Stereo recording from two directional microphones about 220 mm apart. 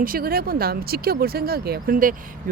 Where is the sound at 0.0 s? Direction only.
40° right (ahead or behind).